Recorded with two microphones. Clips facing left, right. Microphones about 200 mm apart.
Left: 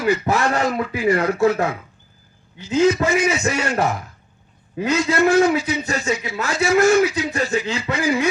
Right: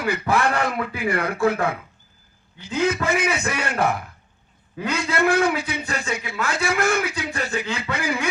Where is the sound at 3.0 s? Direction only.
60° right (ahead or behind).